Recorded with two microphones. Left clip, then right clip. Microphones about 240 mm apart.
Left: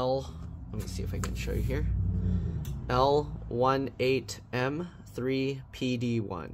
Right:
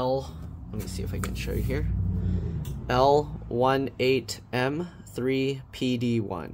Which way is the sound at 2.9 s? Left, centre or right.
Centre.